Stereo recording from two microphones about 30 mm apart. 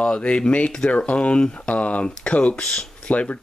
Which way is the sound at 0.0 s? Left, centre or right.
Left.